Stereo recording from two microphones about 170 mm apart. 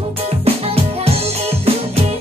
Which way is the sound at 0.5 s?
35° right (ahead or behind).